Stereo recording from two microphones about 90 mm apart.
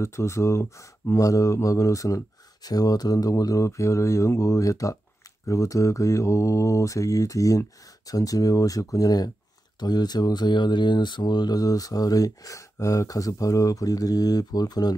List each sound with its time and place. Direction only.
0.0 s speech: 30° left (ahead or behind); by 15.0 s 50° left (ahead or behind)